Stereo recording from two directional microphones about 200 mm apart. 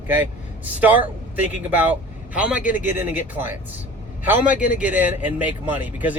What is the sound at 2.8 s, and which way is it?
Speech, 10° right (ahead or behind).